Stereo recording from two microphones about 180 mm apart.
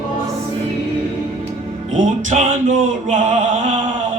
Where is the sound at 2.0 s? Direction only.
45° right (ahead or behind).